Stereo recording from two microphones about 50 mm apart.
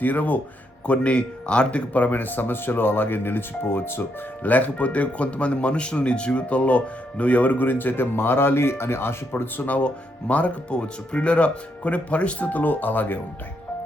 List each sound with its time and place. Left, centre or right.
0.0 s speech: left
0.9 s speech: left
1.9 s speech: left
4.4 s speech: left
9.6 s speech: left